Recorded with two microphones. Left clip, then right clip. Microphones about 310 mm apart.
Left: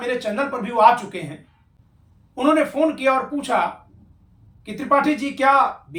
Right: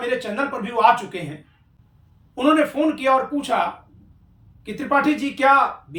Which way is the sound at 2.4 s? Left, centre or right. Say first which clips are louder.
Even; centre.